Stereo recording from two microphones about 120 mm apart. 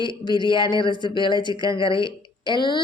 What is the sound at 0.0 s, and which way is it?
A woman's voice, 40° left (ahead or behind).